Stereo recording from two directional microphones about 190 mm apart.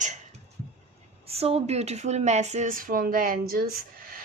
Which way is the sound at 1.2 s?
30° right (ahead or behind).